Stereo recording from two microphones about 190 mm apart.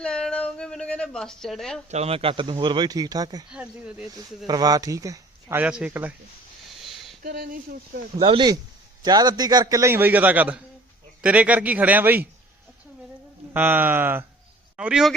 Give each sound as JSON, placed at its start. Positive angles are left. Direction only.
{"t": 0.0, "sound": "a sound", "side_deg": 5}
{"t": 1.9, "sound": "speech", "side_deg": -35}
{"t": 3.5, "sound": "speech", "side_deg": -5}
{"t": 4.4, "sound": "a man's voice", "side_deg": -20}
{"t": 6.7, "sound": "a sound", "side_deg": 0}
{"t": 7.2, "sound": "speech", "side_deg": -45}
{"t": 8.2, "sound": "a man's voice", "side_deg": -25}
{"t": 13.5, "sound": "a man's voice", "side_deg": -10}